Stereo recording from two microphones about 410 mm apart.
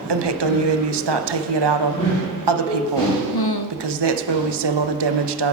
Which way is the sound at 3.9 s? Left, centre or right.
Right.